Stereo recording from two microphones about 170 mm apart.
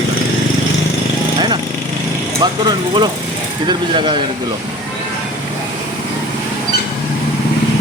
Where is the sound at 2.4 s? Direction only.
25° right (ahead or behind).